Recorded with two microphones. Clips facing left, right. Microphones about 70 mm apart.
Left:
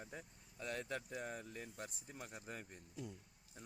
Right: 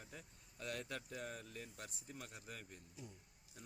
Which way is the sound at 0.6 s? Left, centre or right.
Centre.